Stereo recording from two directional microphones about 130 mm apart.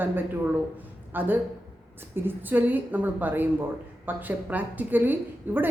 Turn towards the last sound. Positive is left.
turn(degrees=-15)  # may be behind; listen again after turning